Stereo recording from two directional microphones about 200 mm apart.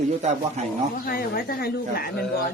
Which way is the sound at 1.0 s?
50° left (ahead or behind).